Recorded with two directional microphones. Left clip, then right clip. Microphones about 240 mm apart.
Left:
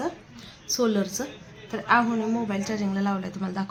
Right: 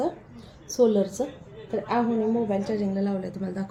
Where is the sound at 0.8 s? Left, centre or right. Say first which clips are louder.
Right 5 dB; left.